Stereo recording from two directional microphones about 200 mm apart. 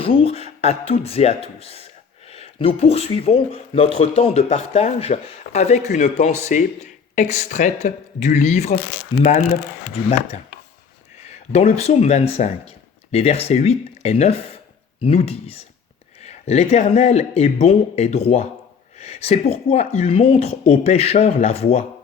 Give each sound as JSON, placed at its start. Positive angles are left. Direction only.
{"t": 0.0, "sound": "speech", "side_deg": 30}
{"t": 9.9, "sound": "speech", "side_deg": 35}
{"t": 11.5, "sound": "speech", "side_deg": 30}